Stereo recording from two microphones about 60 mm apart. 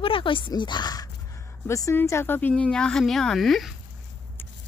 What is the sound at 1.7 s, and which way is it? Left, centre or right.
Speech, left.